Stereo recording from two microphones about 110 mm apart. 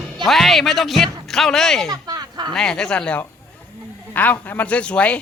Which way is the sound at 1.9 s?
35° right (ahead or behind).